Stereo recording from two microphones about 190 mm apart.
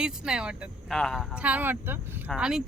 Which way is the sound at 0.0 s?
5° right (ahead or behind).